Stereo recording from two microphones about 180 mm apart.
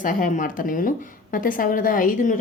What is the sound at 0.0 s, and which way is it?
A woman's voice, 45° left (ahead or behind).